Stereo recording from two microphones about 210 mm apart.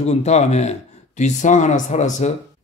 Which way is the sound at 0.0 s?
30° left (ahead or behind).